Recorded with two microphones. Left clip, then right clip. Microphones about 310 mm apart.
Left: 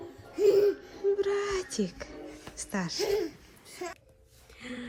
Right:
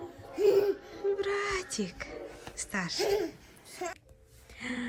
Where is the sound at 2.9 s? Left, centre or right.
Centre.